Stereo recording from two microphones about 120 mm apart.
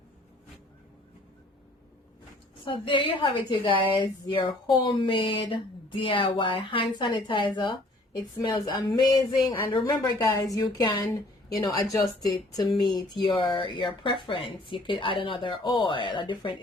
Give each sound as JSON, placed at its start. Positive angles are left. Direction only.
{"t": 2.6, "sound": "a woman's voice", "side_deg": 45}